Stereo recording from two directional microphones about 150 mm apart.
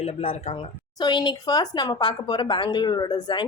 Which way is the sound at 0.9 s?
30° left (ahead or behind).